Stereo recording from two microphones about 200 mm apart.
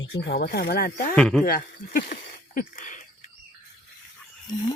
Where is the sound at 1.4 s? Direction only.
45° left (ahead or behind).